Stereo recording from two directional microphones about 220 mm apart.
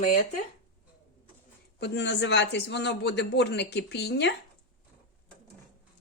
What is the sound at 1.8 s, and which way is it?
Speech, 50° left (ahead or behind).